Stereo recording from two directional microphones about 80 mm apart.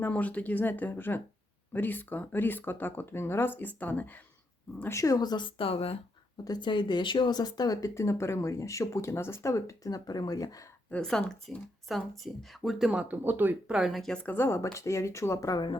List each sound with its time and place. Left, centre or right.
0.0 s speech: centre
4.9 s speech: left
10.9 s speech: centre
12.9 s speech: centre
13.7 s speech: centre
14.3 s speech: left
15.5 s speech: left